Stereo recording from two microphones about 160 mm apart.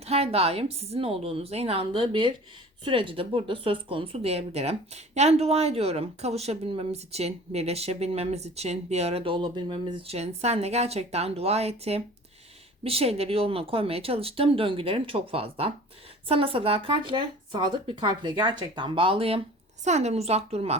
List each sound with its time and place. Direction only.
0.0 s a woman's voice: 40° right (ahead or behind)